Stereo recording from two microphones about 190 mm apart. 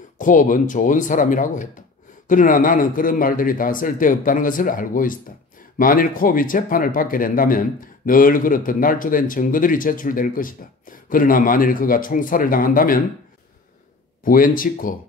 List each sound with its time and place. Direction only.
0.2 s speech: 45° left (ahead or behind)
14.2 s speech: 45° left (ahead or behind)